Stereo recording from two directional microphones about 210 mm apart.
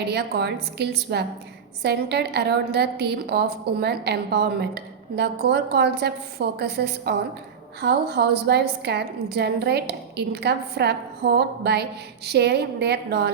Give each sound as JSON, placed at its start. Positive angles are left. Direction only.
{"t": 0.1, "sound": "a woman's voice", "side_deg": -50}